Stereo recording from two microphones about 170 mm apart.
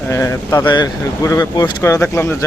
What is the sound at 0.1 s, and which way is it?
A man's voice, 20° left (ahead or behind).